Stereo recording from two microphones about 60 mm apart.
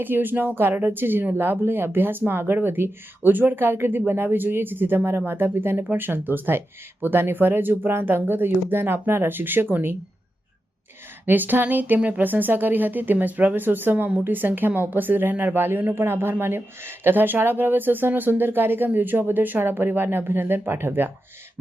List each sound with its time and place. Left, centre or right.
0.0 s speech: right
11.3 s speech: right